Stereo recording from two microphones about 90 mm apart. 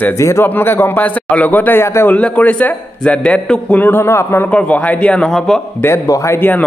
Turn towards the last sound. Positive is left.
turn(degrees=20)  # may be behind; listen again after turning